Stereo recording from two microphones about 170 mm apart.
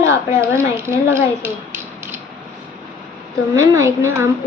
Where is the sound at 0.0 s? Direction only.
15° right (ahead or behind).